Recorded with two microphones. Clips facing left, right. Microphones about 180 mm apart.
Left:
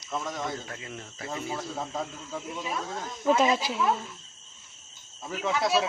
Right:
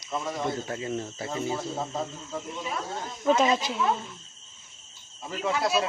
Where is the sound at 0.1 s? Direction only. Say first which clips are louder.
Right 3 dB; centre (ahead or behind).